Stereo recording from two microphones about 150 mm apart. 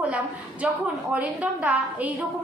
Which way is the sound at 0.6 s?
10° right (ahead or behind).